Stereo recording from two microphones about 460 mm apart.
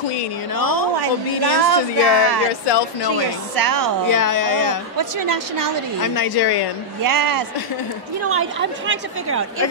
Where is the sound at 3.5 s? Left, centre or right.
Right.